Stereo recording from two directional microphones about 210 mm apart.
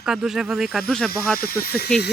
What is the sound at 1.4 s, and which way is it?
Speech, 45° left (ahead or behind).